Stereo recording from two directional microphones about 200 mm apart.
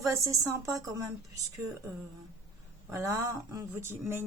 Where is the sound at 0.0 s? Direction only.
15° right (ahead or behind).